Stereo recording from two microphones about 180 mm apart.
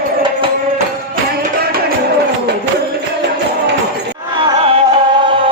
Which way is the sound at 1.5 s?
60° right (ahead or behind).